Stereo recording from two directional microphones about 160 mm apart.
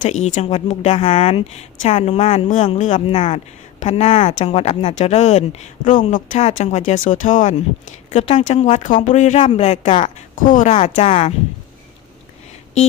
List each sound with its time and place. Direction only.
0.0 s speech: 45° left (ahead or behind)
8.1 s speech: 35° left (ahead or behind)
10.3 s speech: 55° left (ahead or behind)
10.7 s speech: 40° left (ahead or behind)